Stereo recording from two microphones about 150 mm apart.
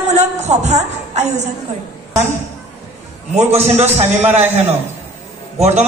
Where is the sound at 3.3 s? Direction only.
45° right (ahead or behind).